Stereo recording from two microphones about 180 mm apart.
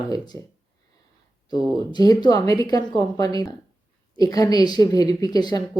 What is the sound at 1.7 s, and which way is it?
A woman's voice, 20° left (ahead or behind).